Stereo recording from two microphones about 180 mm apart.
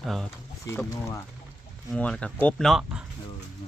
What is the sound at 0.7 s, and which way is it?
Speech, 15° left (ahead or behind).